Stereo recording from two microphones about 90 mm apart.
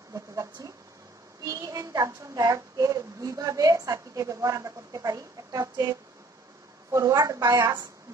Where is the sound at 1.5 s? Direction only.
40° right (ahead or behind).